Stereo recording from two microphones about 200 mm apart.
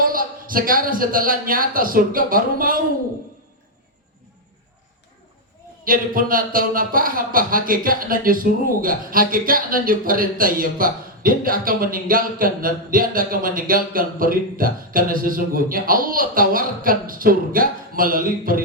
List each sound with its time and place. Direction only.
0.0 s speech: 45° right (ahead or behind)
5.8 s speech: 45° right (ahead or behind)